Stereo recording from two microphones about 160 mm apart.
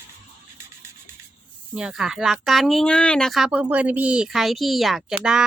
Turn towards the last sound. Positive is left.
turn(degrees=-5)  # may be behind; listen again after turning